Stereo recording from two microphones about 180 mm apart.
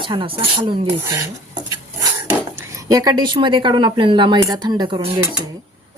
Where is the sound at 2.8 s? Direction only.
20° right (ahead or behind).